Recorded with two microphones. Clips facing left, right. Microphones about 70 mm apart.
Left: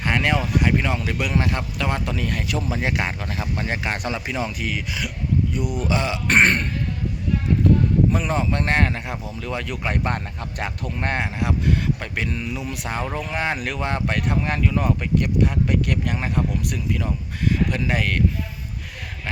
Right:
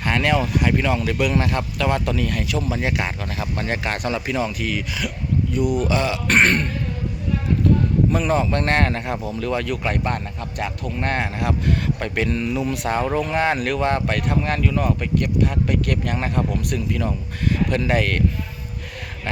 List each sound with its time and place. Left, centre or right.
0.0 s a sound: centre
0.6 s speech: centre
3.5 s speech: centre
8.1 s speech: centre
9.7 s speech: left
11.9 s speech: centre
13.0 s speech: centre
13.3 s speech: centre